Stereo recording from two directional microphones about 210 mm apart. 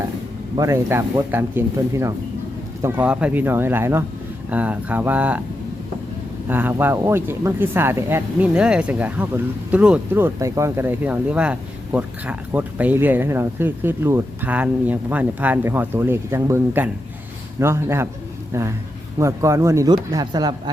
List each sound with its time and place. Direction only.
0.5 s speech: 15° right (ahead or behind)
6.5 s speech: 10° right (ahead or behind)